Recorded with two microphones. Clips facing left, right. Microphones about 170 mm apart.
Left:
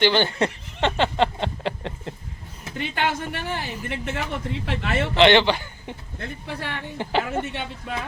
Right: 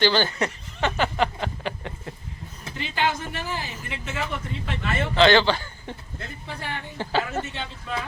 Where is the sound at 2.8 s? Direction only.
60° left (ahead or behind).